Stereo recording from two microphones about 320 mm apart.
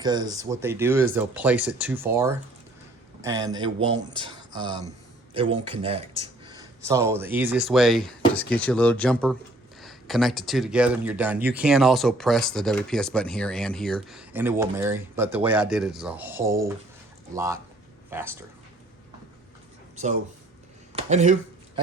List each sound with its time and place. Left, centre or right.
0.0 s speech: centre
20.9 s speech: right